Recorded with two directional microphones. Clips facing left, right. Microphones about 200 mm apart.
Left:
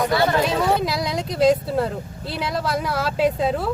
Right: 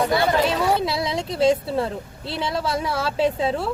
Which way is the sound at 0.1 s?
20° right (ahead or behind).